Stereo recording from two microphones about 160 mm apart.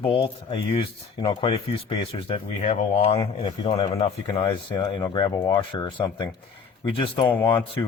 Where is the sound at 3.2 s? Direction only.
30° left (ahead or behind).